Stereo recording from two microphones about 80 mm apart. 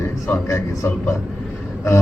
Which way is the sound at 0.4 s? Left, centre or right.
Left.